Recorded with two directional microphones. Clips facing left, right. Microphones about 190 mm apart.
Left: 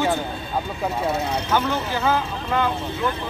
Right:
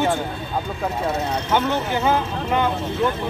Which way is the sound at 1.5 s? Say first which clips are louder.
Right 3 dB; 20° right (ahead or behind).